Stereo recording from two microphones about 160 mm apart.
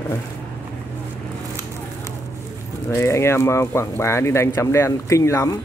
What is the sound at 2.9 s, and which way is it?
Speech, 15° left (ahead or behind).